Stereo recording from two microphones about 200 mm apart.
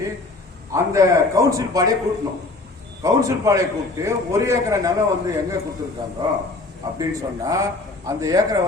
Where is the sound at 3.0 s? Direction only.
15° right (ahead or behind).